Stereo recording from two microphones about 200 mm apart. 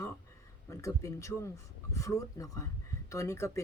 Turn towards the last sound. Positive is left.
turn(degrees=15)  # may be behind; listen again after turning